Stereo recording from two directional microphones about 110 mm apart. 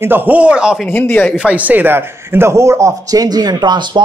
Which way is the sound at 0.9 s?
15° left (ahead or behind).